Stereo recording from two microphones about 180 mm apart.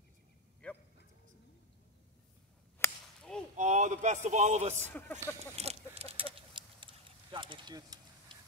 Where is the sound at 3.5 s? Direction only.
45° right (ahead or behind).